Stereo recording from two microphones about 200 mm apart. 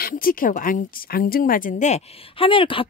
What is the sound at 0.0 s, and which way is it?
A woman's voice, 45° left (ahead or behind).